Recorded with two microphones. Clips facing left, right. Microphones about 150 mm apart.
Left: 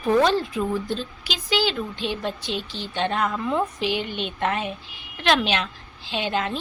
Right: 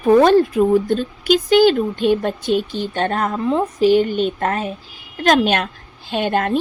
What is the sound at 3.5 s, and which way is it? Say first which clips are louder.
Speech: right 7 dB; 20° right (ahead or behind).